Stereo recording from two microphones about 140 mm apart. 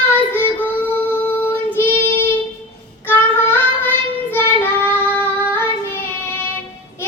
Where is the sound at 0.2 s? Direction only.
15° left (ahead or behind).